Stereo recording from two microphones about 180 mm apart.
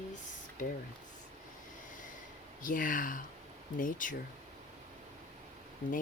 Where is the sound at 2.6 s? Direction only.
50° left (ahead or behind).